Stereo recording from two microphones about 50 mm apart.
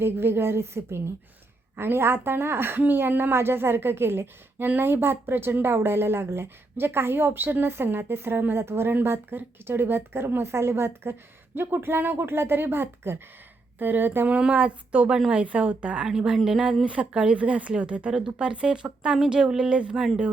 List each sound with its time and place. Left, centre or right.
0.0 s a woman's voice: right
1.7 s a woman's voice: right
14.3 s speech: right
16.0 s a woman's voice: centre
16.8 s speech: right